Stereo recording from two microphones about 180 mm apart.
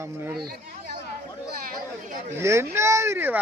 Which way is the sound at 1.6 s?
50° right (ahead or behind).